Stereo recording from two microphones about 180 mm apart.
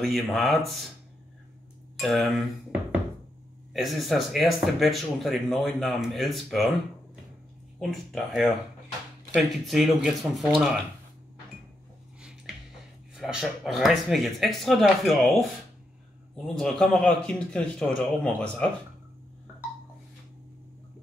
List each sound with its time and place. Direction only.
0.0 s speech: centre (ahead or behind)
2.0 s speech: centre (ahead or behind)
3.7 s speech: centre (ahead or behind)
7.9 s speech: centre (ahead or behind)
12.2 s a sound: 5° right (ahead or behind)
13.1 s speech: centre (ahead or behind)
16.5 s speech: 5° left (ahead or behind)